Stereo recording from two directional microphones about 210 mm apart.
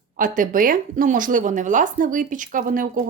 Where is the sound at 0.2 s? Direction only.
40° right (ahead or behind).